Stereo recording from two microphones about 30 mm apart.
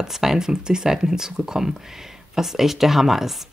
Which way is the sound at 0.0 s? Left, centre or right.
Centre.